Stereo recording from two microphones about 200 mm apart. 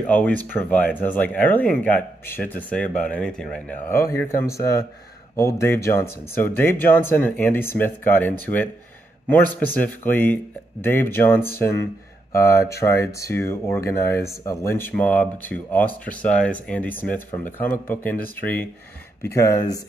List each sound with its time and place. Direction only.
0.0 s speech: 5° left (ahead or behind)
3.9 s speech: 15° left (ahead or behind)
9.8 s speech: 10° left (ahead or behind)